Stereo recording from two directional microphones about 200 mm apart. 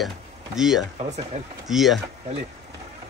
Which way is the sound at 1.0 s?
35° right (ahead or behind).